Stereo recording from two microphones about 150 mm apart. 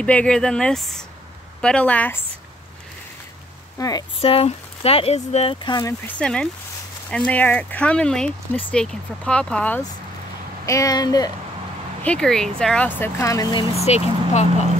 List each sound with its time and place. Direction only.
0.0 s speech: 10° left (ahead or behind)
3.7 s speech: 25° left (ahead or behind)
4.2 s speech: 40° left (ahead or behind)
6.0 s speech: 5° left (ahead or behind)
10.6 s speech: 20° left (ahead or behind)
12.0 s speech: 5° left (ahead or behind); by 13.7 s 25° left (ahead or behind)
13.7 s speech: 45° left (ahead or behind)